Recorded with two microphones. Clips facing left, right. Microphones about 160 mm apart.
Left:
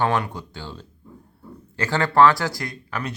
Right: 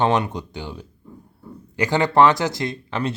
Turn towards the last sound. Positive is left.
turn(degrees=-25)  # may be behind; listen again after turning